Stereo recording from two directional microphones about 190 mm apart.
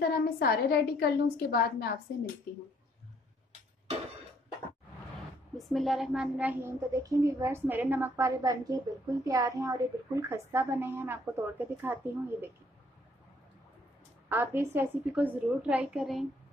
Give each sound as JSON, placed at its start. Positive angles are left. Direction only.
{"t": 0.4, "sound": "a woman's voice", "side_deg": 55}
{"t": 5.6, "sound": "a child's voice", "side_deg": 0}
{"t": 14.3, "sound": "a child's voice", "side_deg": -10}